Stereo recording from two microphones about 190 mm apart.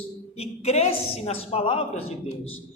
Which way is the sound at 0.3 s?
35° left (ahead or behind).